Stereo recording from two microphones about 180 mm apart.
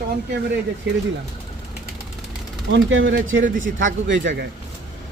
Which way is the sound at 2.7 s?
90° right.